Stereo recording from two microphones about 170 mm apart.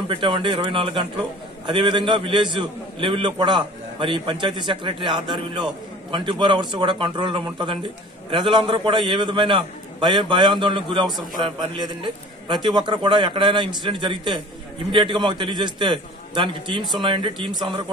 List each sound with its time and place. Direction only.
0.1 s a man's voice: 30° right (ahead or behind)